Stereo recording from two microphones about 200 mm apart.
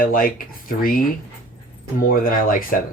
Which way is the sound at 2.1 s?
45° left (ahead or behind).